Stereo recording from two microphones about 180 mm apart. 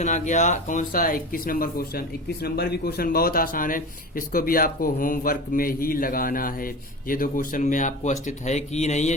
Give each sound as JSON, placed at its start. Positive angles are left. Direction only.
{"t": 0.0, "sound": "speech", "side_deg": 40}